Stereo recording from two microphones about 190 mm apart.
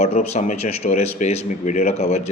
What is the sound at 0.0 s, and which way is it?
Speech, 35° left (ahead or behind).